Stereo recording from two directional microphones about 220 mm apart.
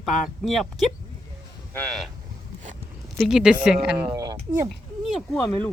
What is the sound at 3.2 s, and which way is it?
Speech, 5° right (ahead or behind).